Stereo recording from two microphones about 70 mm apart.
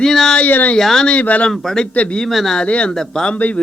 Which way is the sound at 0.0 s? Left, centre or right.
Centre.